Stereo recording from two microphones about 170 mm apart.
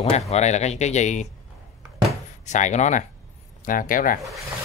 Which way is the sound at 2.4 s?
45° left (ahead or behind).